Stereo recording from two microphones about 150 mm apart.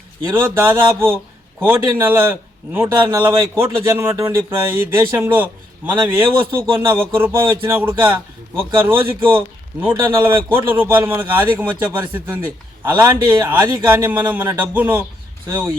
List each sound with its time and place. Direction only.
0.3 s a man's voice: 15° right (ahead or behind)